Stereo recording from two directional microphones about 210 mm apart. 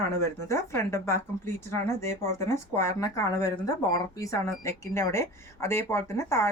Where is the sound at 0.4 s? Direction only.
15° left (ahead or behind).